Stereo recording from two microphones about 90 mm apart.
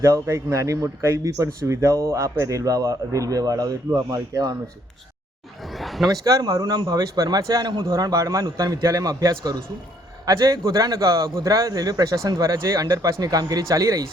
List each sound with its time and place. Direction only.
0.0 s a man's voice: 30° right (ahead or behind)
5.7 s a sound: centre (ahead or behind)
6.2 s a man's voice: 40° right (ahead or behind)
7.9 s a man's voice: 35° right (ahead or behind)